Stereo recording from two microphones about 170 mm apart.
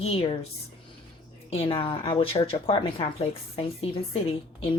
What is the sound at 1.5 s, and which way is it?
A woman's voice, 30° left (ahead or behind).